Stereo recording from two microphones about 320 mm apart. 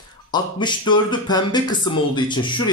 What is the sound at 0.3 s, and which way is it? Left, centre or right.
Speech, centre.